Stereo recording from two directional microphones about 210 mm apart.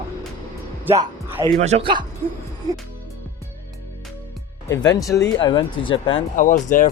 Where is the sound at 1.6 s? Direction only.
30° right (ahead or behind).